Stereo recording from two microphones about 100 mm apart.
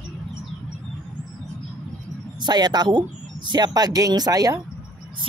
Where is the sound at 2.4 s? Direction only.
45° right (ahead or behind).